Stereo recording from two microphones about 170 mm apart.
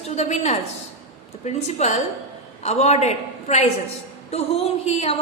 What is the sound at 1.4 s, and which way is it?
A woman's voice, 40° left (ahead or behind).